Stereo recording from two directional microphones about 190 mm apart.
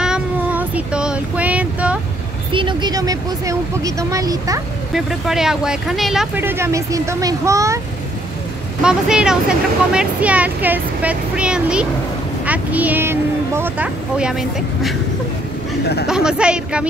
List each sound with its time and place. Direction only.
0.0 s child singing: 5° right (ahead or behind)
2.5 s speech: 25° right (ahead or behind)
4.9 s speech: centre (ahead or behind)
8.8 s speech: 5° right (ahead or behind)
15.8 s speech: 60° left (ahead or behind)
16.1 s speech: 5° right (ahead or behind)